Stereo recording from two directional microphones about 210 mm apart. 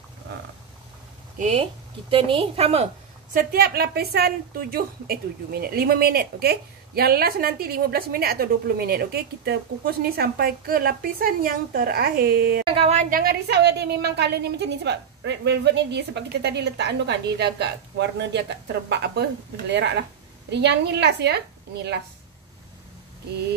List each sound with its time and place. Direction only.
1.4 s a woman's voice: 30° right (ahead or behind)
3.3 s a woman's voice: 50° right (ahead or behind)
12.6 s a woman's voice: 30° right (ahead or behind); by 22.0 s 55° right (ahead or behind)